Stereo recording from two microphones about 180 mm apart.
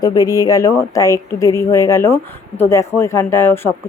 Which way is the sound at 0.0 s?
20° left (ahead or behind).